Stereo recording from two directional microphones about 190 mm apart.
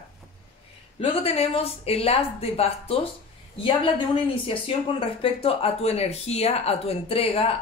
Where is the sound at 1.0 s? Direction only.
30° left (ahead or behind).